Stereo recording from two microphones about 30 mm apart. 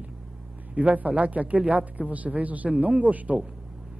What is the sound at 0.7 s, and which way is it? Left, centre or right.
A woman's voice, right.